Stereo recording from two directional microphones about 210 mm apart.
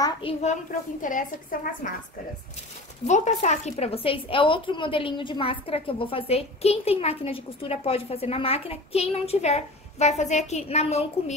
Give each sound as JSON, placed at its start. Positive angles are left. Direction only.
{"t": 0.0, "sound": "a child's voice", "side_deg": 25}
{"t": 3.1, "sound": "a woman's voice", "side_deg": 35}